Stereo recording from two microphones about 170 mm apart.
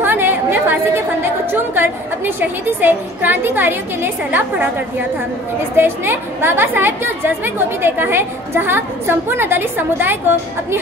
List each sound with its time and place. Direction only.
0.0 s chatter: 10° right (ahead or behind)
1.5 s speech: 10° right (ahead or behind)
5.8 s speech: 15° right (ahead or behind)